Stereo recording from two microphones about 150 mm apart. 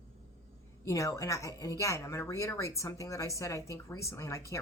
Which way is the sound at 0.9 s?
20° left (ahead or behind).